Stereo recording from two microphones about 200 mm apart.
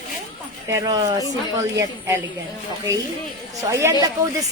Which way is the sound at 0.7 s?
15° right (ahead or behind).